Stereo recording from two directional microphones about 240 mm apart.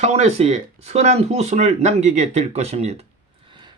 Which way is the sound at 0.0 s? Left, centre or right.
Right.